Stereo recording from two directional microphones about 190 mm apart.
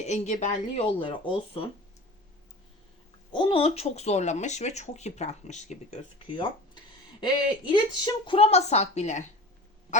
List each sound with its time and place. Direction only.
0.0 s speech: 35° left (ahead or behind)
0.9 s speech: 25° left (ahead or behind)
3.3 s speech: 30° left (ahead or behind)
6.3 s a sound: 25° left (ahead or behind)
7.7 s speech: 25° left (ahead or behind)